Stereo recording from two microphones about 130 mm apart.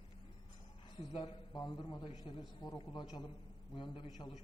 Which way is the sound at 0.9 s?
40° left (ahead or behind).